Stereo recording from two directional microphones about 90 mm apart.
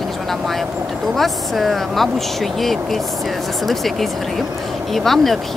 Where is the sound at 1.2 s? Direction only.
Centre (ahead or behind).